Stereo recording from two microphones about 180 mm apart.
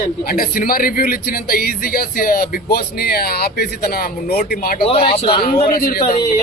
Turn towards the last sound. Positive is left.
turn(degrees=55)  # may be behind; listen again after turning